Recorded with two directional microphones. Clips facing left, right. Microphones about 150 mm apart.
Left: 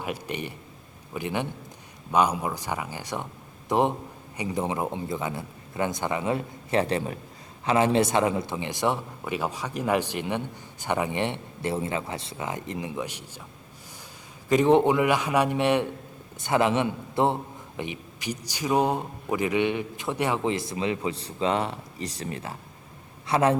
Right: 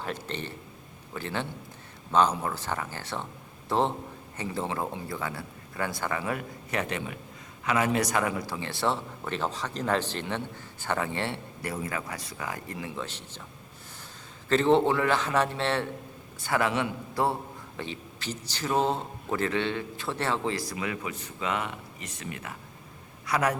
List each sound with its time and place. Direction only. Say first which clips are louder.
0.0 s a man's voice: left 3 dB; 10° left (ahead or behind)
14.5 s a man's voice: left 3 dB; 15° left (ahead or behind)